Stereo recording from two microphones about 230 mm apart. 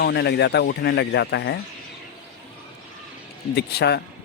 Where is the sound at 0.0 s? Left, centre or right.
Left.